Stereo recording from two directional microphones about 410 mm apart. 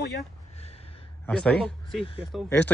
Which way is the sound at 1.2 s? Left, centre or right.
Centre.